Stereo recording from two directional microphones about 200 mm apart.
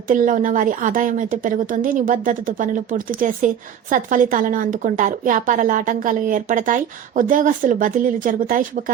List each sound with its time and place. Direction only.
0.1 s a woman's voice: 40° right (ahead or behind)